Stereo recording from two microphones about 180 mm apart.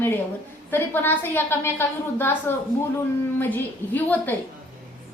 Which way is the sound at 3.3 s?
10° left (ahead or behind).